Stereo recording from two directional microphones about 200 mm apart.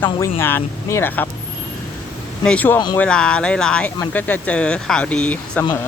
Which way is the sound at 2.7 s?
20° left (ahead or behind).